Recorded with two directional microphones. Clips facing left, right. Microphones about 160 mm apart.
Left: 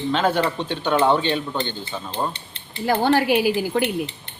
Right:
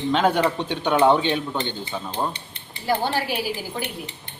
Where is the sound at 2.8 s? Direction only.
55° left (ahead or behind).